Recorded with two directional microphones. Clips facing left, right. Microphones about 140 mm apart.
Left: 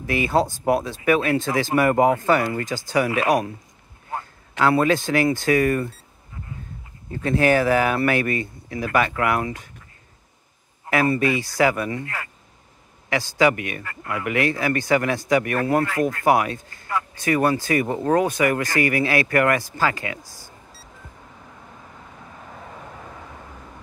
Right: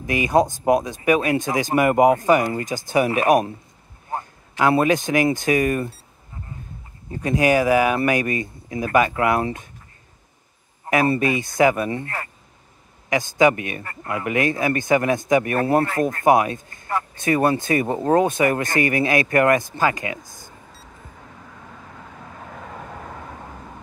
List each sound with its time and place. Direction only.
0.0 s speech: 15° right (ahead or behind)
7.1 s speech: 15° right (ahead or behind)
10.9 s speech: 20° right (ahead or behind)
13.1 s speech: 20° right (ahead or behind)
20.2 s a sound: 20° right (ahead or behind)